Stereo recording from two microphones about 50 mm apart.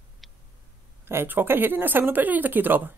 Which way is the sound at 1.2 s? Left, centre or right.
Right.